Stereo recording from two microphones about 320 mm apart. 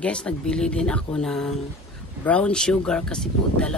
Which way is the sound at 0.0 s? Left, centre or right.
Centre.